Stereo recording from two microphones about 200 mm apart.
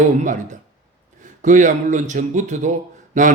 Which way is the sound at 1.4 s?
40° right (ahead or behind).